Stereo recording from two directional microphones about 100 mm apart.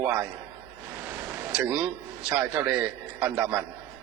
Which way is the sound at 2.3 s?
20° right (ahead or behind).